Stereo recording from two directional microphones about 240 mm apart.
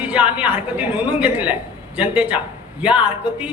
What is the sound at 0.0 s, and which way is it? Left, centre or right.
A man's voice, centre.